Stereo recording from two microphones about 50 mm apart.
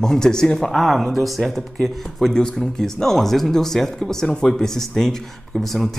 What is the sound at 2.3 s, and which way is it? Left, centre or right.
Speech, centre.